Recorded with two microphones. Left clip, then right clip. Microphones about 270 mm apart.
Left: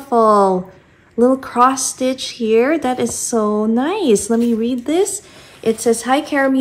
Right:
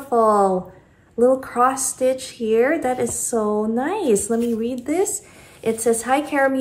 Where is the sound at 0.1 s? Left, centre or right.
Centre.